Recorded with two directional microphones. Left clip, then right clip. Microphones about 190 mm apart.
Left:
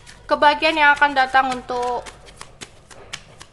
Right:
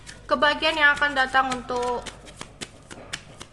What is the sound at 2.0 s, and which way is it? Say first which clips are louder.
Shuffling cards: even; 5° right (ahead or behind).